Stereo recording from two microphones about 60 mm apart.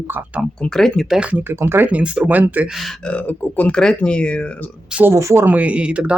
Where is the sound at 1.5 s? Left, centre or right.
Right.